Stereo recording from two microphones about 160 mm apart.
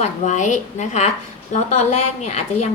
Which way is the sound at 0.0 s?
50° left (ahead or behind).